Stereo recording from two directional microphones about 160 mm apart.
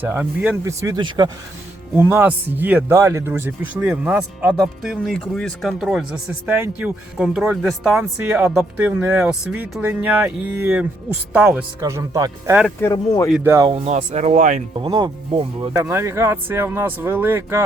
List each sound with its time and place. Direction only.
0.0 s a man's voice: 10° right (ahead or behind)
0.6 s speech: 20° right (ahead or behind)
2.0 s a man's voice: 15° right (ahead or behind)
11.8 s speech: 20° right (ahead or behind)
12.8 s speech: 20° left (ahead or behind)
13.4 s a man's voice: 15° right (ahead or behind)
13.7 s speech: 40° right (ahead or behind)
14.8 s speech: 30° right (ahead or behind)
15.7 s a man's voice: 15° right (ahead or behind)